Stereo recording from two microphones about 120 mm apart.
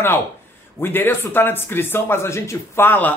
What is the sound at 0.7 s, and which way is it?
Speech, 20° left (ahead or behind).